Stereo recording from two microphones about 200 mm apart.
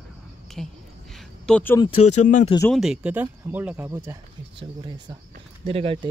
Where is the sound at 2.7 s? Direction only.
Centre (ahead or behind).